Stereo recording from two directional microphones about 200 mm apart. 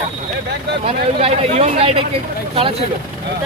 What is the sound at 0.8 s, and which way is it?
Speech, 30° right (ahead or behind).